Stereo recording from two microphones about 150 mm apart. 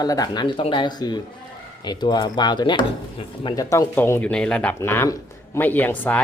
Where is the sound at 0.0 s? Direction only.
25° left (ahead or behind).